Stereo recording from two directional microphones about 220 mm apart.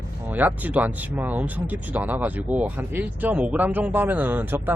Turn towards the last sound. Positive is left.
turn(degrees=-10)  # may be behind; listen again after turning